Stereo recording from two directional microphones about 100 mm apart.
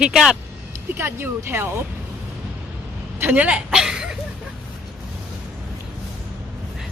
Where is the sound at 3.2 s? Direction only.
15° right (ahead or behind).